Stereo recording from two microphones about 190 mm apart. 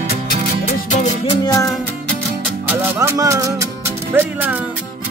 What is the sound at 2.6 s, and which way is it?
Music, 10° right (ahead or behind).